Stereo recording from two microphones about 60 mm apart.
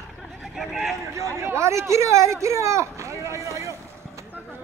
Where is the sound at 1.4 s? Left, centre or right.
Right.